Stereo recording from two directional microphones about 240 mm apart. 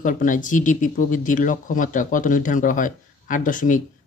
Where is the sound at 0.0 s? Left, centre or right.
Left.